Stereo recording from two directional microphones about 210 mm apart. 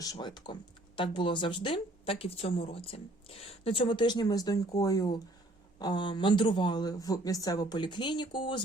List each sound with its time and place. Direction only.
0.0 s speech: 20° left (ahead or behind)